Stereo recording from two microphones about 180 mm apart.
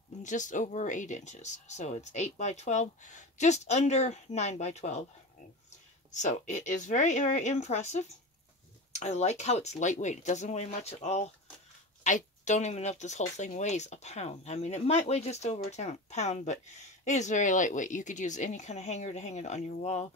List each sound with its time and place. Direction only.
0.2 s speech: 45° left (ahead or behind)
6.1 s speech: 40° left (ahead or behind)